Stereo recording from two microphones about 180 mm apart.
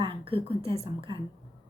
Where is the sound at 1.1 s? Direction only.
25° right (ahead or behind).